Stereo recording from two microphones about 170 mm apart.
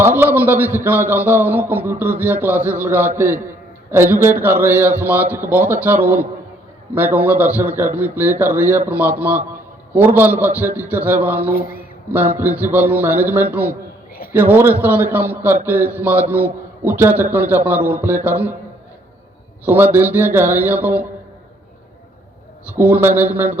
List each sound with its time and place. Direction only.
0.0 s a man's voice: 10° right (ahead or behind)
19.6 s a man's voice: 10° right (ahead or behind)
22.7 s a man's voice: 10° right (ahead or behind)